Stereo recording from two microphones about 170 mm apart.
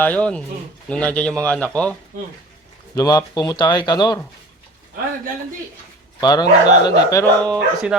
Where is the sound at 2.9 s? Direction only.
20° left (ahead or behind).